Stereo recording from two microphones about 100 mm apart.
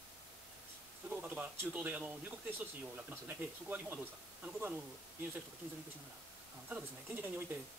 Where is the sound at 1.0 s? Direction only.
15° right (ahead or behind).